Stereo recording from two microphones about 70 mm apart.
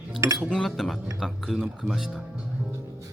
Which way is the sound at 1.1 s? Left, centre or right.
Centre.